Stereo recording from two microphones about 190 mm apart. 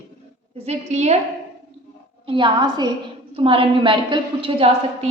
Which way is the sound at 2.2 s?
25° right (ahead or behind).